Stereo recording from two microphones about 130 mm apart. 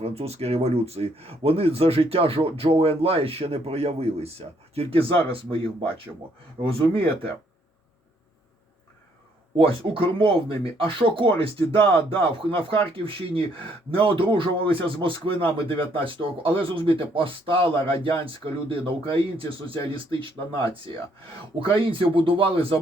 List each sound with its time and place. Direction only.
0.0 s speech: 50° right (ahead or behind)
9.6 s speech: 45° right (ahead or behind)
21.6 s speech: 40° right (ahead or behind)